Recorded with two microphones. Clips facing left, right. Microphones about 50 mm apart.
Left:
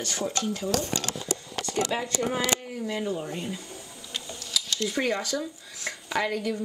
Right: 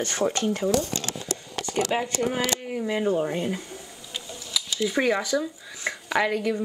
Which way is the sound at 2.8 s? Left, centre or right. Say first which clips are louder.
Right 4 dB; right.